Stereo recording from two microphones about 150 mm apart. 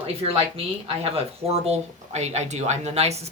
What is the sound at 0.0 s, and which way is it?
A woman's voice, 40° right (ahead or behind).